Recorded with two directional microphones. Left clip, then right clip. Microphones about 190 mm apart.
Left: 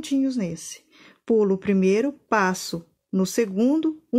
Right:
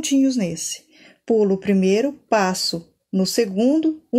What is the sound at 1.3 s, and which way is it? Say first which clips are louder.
Speech: right 2 dB; 35° left (ahead or behind).